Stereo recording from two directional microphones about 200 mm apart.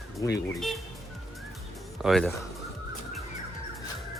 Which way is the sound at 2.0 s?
Centre (ahead or behind).